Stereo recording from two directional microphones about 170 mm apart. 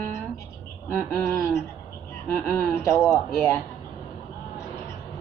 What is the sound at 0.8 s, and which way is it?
Speech, 15° left (ahead or behind).